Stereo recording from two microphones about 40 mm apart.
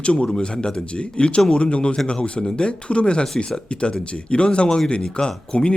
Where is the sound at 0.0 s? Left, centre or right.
Left.